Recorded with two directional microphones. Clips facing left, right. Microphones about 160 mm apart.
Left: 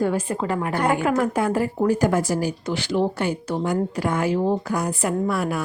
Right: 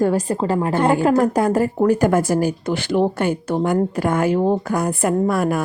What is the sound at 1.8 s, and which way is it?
A woman's voice, 55° right (ahead or behind).